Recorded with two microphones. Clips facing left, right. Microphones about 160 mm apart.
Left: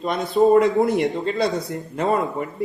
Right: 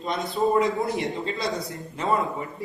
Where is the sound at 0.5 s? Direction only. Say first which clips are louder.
Left 7 dB; 60° left (ahead or behind).